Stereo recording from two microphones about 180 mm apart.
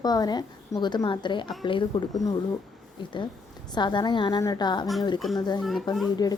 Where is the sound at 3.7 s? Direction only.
25° left (ahead or behind).